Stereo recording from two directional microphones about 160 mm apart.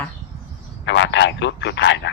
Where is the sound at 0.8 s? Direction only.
90° left.